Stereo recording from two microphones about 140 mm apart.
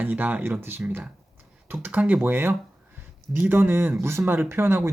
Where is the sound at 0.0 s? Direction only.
10° right (ahead or behind).